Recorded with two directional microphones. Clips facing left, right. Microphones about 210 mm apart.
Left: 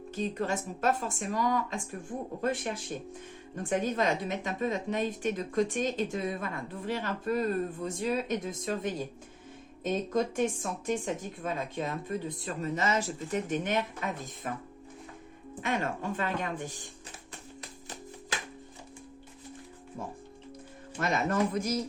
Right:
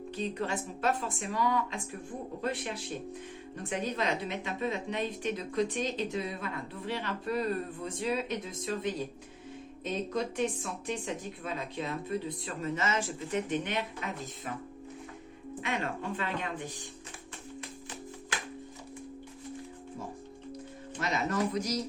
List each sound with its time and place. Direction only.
0.1 s speech: 45° left (ahead or behind)
15.6 s speech: 45° left (ahead or behind)
21.0 s speech: 50° left (ahead or behind)